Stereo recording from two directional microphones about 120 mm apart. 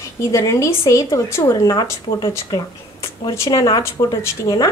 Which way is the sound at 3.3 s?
25° left (ahead or behind).